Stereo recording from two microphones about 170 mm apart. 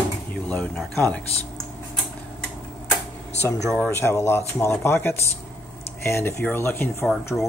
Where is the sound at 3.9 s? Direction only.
15° left (ahead or behind).